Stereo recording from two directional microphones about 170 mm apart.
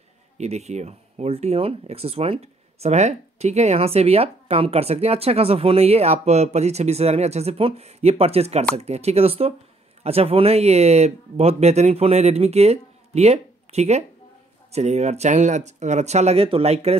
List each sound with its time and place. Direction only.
0.4 s speech: 40° right (ahead or behind)